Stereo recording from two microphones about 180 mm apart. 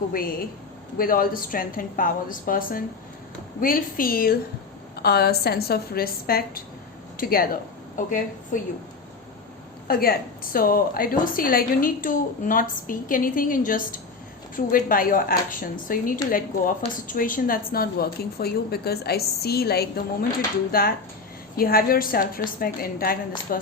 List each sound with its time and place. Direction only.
0.1 s a woman's voice: 55° left (ahead or behind)
9.8 s a woman's voice: 55° left (ahead or behind)